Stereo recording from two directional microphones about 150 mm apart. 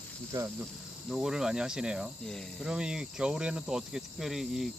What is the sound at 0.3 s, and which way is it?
Cricket, 25° right (ahead or behind).